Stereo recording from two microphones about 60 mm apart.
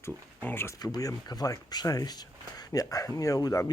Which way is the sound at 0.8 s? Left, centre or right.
Left.